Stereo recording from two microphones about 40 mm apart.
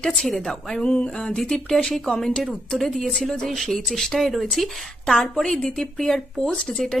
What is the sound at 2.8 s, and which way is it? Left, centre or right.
A woman's voice, centre.